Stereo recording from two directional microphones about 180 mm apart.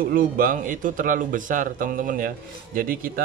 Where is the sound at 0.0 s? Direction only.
55° right (ahead or behind).